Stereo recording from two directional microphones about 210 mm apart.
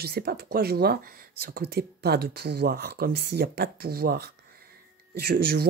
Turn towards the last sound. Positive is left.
turn(degrees=-45)  # may be behind; listen again after turning